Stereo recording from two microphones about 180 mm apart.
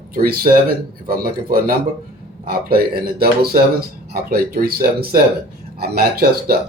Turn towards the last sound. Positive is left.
turn(degrees=-60)  # may be behind; listen again after turning